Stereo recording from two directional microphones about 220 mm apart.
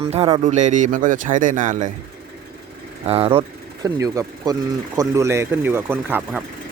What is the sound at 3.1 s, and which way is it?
Speech, 25° right (ahead or behind).